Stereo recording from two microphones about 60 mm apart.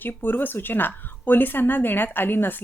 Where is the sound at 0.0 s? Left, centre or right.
Left.